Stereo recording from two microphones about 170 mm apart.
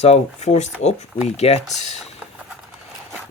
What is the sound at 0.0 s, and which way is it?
Speech, 40° left (ahead or behind).